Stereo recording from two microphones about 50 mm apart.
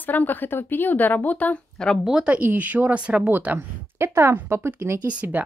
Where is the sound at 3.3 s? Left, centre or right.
Right.